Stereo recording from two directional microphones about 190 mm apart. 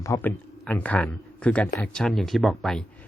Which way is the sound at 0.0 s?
15° left (ahead or behind).